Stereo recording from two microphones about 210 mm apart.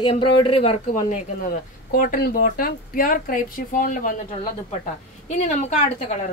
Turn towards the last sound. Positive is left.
turn(degrees=30)  # may be behind; listen again after turning